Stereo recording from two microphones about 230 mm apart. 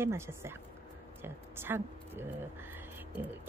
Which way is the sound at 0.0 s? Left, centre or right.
Centre.